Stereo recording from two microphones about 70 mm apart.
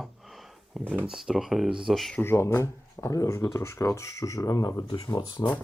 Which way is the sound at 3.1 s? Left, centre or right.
Left.